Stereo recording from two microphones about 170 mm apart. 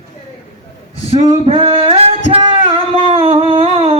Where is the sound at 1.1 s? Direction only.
40° right (ahead or behind).